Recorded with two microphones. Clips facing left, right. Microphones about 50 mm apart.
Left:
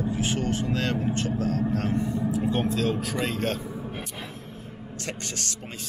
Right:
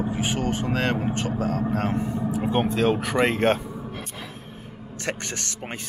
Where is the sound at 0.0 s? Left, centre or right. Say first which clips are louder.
Right 1 dB; centre; by 3.5 s right.